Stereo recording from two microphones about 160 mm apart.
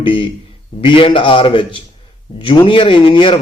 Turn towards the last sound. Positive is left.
turn(degrees=30)  # may be behind; listen again after turning